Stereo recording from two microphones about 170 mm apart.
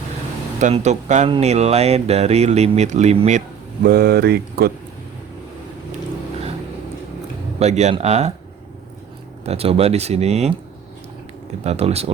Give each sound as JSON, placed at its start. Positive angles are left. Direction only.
{"t": 0.6, "sound": "speech", "side_deg": -40}
{"t": 3.8, "sound": "speech", "side_deg": -60}
{"t": 7.6, "sound": "speech", "side_deg": -40}
{"t": 9.4, "sound": "speech", "side_deg": -35}
{"t": 11.6, "sound": "speech", "side_deg": -40}